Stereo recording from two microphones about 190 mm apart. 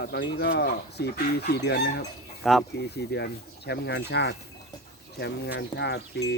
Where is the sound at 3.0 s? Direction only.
60° left (ahead or behind).